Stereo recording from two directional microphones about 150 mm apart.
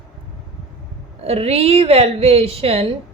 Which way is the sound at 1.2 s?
40° right (ahead or behind).